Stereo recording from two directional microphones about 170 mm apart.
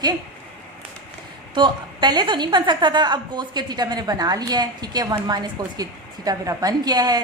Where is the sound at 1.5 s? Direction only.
25° right (ahead or behind).